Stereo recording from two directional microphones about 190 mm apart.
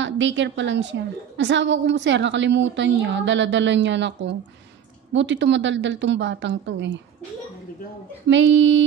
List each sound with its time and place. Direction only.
0.0 s a woman's voice: 75° right (ahead or behind)
8.3 s a woman's voice: 70° right (ahead or behind)